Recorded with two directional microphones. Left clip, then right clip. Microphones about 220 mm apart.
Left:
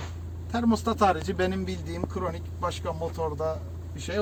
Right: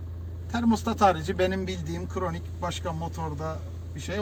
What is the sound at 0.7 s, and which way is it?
Speech, 20° left (ahead or behind).